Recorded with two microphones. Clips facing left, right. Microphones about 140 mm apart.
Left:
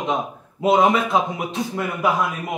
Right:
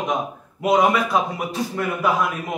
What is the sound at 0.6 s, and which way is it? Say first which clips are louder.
A man's voice: left 1 dB; 25° left (ahead or behind).